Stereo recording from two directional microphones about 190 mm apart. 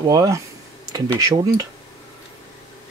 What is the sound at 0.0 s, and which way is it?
Speech, 20° right (ahead or behind).